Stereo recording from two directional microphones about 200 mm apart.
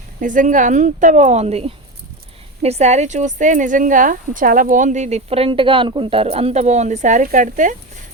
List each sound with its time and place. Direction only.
0.2 s speech: 40° right (ahead or behind)